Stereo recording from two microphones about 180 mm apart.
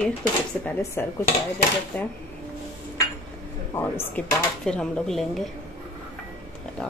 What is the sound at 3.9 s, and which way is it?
Speech, 5° left (ahead or behind).